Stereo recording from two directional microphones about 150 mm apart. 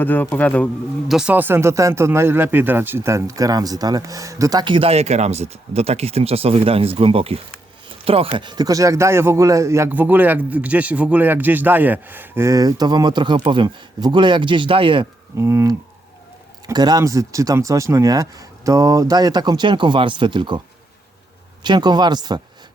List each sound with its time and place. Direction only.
0.0 s a man's voice: 10° left (ahead or behind)
1.1 s speech: 10° right (ahead or behind); by 15.0 s 35° right (ahead or behind)
15.4 s speech: 15° right (ahead or behind)
21.6 s speech: 30° right (ahead or behind)